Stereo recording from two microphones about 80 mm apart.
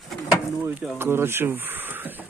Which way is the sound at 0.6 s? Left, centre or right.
Right.